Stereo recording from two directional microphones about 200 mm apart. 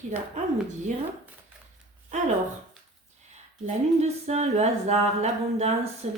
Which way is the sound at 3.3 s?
35° right (ahead or behind).